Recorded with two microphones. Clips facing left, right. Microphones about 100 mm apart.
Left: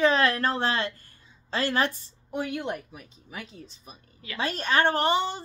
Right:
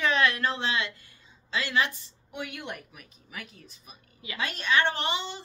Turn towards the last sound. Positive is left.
turn(degrees=45)  # may be behind; listen again after turning